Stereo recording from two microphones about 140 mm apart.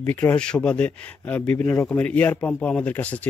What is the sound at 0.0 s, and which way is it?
A man's voice, 15° left (ahead or behind).